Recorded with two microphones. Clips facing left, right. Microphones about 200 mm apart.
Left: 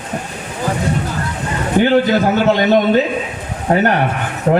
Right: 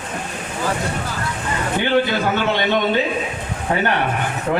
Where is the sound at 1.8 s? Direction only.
40° left (ahead or behind).